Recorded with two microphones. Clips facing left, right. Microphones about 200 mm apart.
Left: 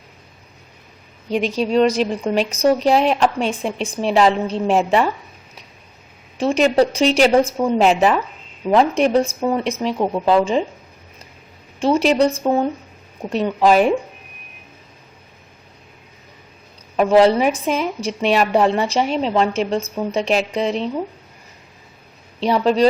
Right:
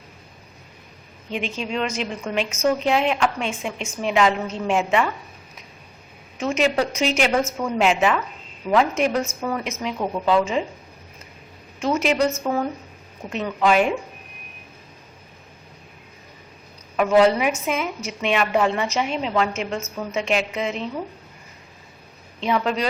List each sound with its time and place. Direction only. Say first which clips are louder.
1.3 s a woman's voice: left 8 dB; 35° left (ahead or behind)
6.3 s a woman's voice: left 5 dB; 35° left (ahead or behind)
11.8 s a woman's voice: left 5 dB; 30° left (ahead or behind)
17.0 s a woman's voice: left 3 dB; 30° left (ahead or behind)
22.4 s a woman's voice: left 7 dB; 35° left (ahead or behind)